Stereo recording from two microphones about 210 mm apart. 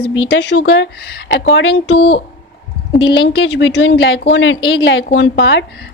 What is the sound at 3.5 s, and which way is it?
Speech, 60° left (ahead or behind).